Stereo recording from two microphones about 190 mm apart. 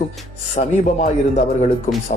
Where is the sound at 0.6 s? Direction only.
45° left (ahead or behind).